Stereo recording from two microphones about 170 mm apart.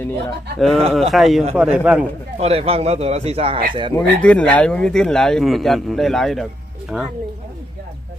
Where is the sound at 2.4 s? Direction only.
35° right (ahead or behind).